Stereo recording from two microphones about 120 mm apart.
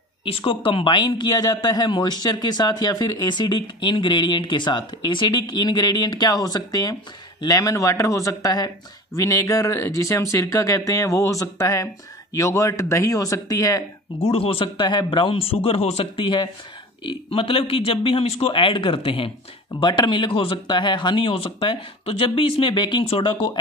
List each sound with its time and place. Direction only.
0.2 s a man's voice: 45° left (ahead or behind); by 14.3 s 30° left (ahead or behind)
14.3 s speech: 50° left (ahead or behind)
17.0 s speech: 50° left (ahead or behind)